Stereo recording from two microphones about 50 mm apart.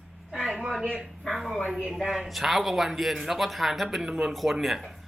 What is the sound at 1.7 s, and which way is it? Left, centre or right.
Speech, centre.